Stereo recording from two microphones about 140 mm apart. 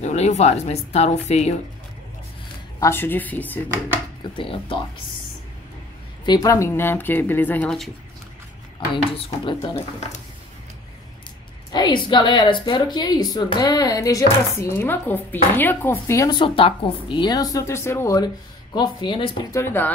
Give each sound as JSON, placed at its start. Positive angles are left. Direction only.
{"t": 0.0, "sound": "speech", "side_deg": 55}
{"t": 2.8, "sound": "a woman's voice", "side_deg": 15}
{"t": 4.2, "sound": "a woman's voice", "side_deg": 40}
{"t": 6.2, "sound": "a woman's voice", "side_deg": 25}
{"t": 8.9, "sound": "a woman's voice", "side_deg": 35}
{"t": 11.7, "sound": "a woman's voice", "side_deg": 30}
{"t": 16.3, "sound": "a woman's voice", "side_deg": 35}
{"t": 19.5, "sound": "a woman's voice", "side_deg": 15}